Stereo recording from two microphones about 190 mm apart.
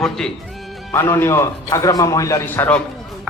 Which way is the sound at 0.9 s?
15° left (ahead or behind).